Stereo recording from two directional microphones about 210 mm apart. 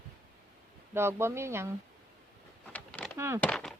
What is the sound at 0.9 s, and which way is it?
Speech, 10° right (ahead or behind).